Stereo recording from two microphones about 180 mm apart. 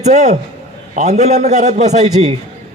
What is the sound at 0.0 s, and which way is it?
A man's voice, 40° right (ahead or behind).